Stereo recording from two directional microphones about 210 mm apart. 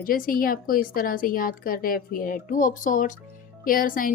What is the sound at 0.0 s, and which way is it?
A woman's voice, 40° left (ahead or behind).